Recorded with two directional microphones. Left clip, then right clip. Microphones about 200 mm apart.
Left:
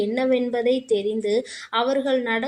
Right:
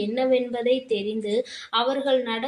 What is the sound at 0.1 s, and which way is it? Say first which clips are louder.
A woman's voice: left 1 dB; 40° left (ahead or behind).